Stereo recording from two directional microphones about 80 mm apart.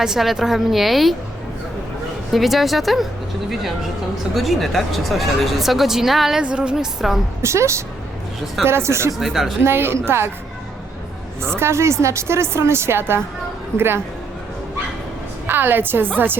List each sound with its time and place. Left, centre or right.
0.0 s speech: centre
2.3 s speech: centre
4.4 s speech: centre
7.0 s speech: centre
7.4 s a woman's voice: right
9.1 s speech: centre
9.6 s a woman's voice: right
11.4 s a woman's voice: right
15.4 s a woman's voice: right